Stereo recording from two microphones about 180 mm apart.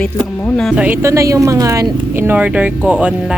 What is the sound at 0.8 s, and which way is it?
Speech, 10° right (ahead or behind).